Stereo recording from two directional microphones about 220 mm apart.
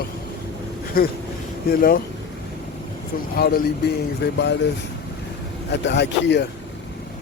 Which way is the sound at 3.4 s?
45° left (ahead or behind).